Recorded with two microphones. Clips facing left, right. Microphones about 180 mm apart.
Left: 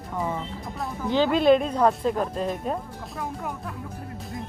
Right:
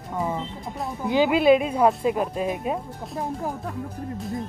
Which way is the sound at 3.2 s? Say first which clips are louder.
Right 3 dB; 35° right (ahead or behind).